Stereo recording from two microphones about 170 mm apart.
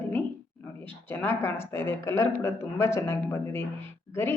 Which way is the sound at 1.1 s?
10° left (ahead or behind).